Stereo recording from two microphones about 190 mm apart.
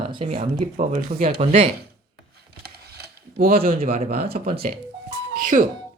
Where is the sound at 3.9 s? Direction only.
30° right (ahead or behind).